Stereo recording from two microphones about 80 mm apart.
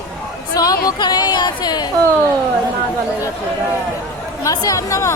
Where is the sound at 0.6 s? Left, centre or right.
Left.